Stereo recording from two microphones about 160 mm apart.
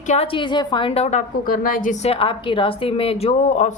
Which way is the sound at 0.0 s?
45° left (ahead or behind).